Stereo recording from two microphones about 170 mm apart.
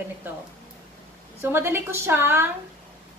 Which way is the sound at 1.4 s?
15° right (ahead or behind).